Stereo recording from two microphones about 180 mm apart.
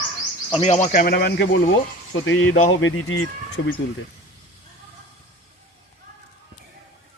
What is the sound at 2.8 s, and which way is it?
Speech, 90° left.